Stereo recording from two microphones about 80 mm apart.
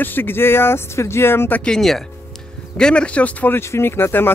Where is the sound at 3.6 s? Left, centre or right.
Left.